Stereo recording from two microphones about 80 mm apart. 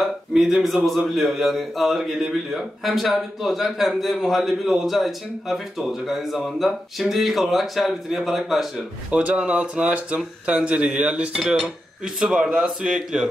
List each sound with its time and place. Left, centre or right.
0.0 s speech: centre
9.1 s speech: centre